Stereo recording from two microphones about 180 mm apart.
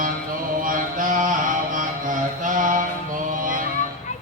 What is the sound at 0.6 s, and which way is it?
Mantra, 50° right (ahead or behind).